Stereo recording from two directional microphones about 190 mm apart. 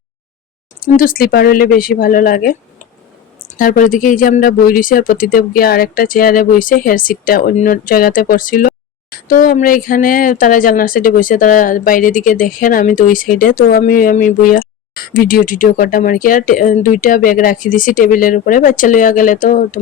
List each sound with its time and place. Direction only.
0.9 s speech: 45° left (ahead or behind)